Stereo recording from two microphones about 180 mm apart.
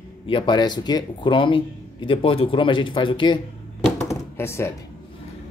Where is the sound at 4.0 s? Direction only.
15° left (ahead or behind).